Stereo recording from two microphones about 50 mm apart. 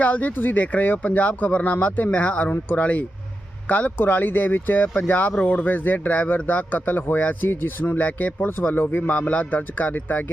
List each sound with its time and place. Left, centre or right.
0.0 s speech: left
7.4 s speech: left
8.4 s speech: left